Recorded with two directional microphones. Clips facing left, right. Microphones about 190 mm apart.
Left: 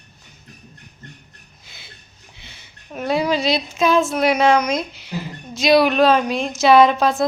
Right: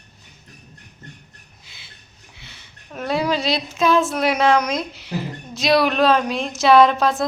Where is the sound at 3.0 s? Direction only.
Centre (ahead or behind).